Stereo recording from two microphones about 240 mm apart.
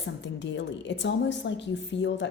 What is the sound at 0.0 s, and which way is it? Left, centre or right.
A woman's voice, left.